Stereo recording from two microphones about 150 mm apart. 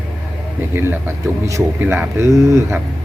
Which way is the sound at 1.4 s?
15° right (ahead or behind).